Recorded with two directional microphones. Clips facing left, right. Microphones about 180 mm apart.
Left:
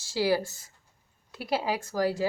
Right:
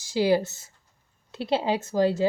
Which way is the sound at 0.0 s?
20° right (ahead or behind).